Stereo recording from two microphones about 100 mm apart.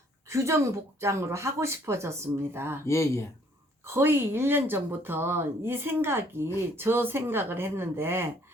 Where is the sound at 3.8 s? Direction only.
25° right (ahead or behind).